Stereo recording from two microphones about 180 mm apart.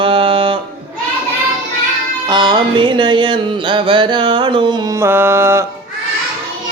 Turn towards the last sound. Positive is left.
turn(degrees=-15)  # may be behind; listen again after turning